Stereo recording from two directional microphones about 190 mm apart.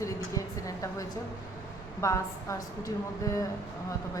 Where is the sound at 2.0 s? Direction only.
15° left (ahead or behind).